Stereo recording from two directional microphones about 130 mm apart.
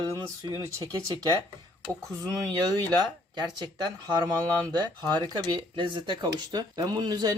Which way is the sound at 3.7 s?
35° right (ahead or behind).